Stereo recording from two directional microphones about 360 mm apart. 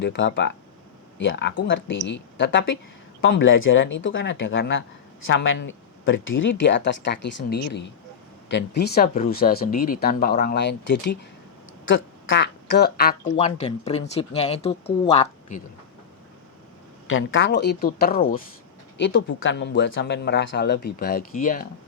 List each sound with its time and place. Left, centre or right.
0.0 s a woman's voice: left
17.1 s speech: left